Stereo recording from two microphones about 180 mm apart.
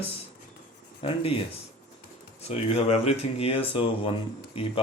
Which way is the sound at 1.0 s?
30° left (ahead or behind).